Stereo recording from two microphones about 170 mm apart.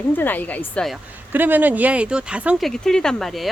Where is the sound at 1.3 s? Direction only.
10° right (ahead or behind).